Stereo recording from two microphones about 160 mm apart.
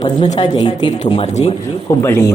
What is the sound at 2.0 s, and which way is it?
Speech, 20° left (ahead or behind).